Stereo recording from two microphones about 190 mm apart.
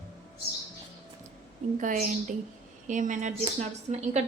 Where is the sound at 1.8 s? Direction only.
45° right (ahead or behind).